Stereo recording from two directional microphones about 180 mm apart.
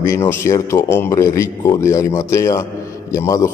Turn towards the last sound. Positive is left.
turn(degrees=15)  # may be behind; listen again after turning